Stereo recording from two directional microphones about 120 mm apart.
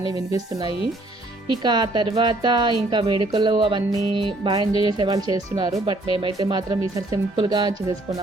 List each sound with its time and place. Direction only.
0.0 s speech: 30° right (ahead or behind)